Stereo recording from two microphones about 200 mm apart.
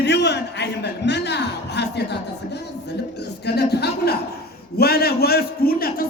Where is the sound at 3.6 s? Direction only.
55° left (ahead or behind).